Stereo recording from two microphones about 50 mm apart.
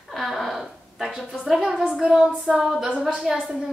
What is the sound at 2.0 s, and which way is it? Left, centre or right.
Child singing, right.